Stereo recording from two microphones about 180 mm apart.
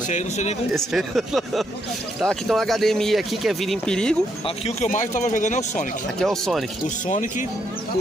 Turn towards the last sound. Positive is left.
turn(degrees=45)  # may be behind; listen again after turning